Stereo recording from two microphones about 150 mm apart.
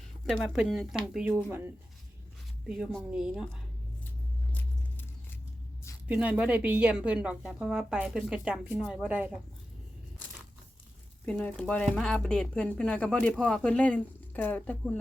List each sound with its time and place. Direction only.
0.3 s speech: centre (ahead or behind)
6.1 s speech: 10° right (ahead or behind)
11.3 s speech: 10° left (ahead or behind)